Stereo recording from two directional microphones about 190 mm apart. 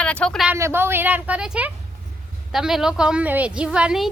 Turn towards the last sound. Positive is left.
turn(degrees=-5)  # may be behind; listen again after turning